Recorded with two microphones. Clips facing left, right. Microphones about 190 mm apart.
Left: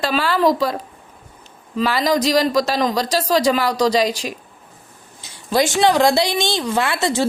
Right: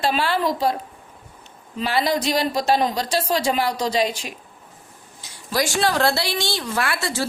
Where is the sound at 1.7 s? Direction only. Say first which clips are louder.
Left 4 dB; 90° left.